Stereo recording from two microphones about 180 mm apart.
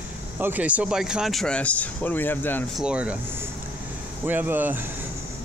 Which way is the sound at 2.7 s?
5° right (ahead or behind).